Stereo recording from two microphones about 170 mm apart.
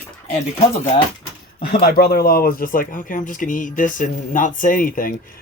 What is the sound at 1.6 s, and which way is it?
Speech, 65° left (ahead or behind).